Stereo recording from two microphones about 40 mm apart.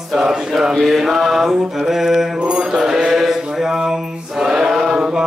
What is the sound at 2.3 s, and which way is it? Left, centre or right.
Mantra, right.